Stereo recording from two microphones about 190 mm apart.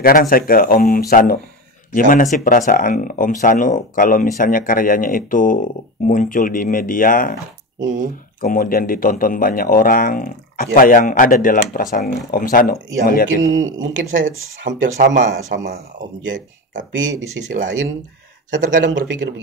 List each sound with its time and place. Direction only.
0.0 s speech: 50° left (ahead or behind)
8.4 s speech: 50° left (ahead or behind)
13.4 s speech: 90° right; by 15.2 s 70° right (ahead or behind)
15.5 s speech: 45° right (ahead or behind)
18.6 s speech: 40° right (ahead or behind)
18.9 s speech: 70° right (ahead or behind)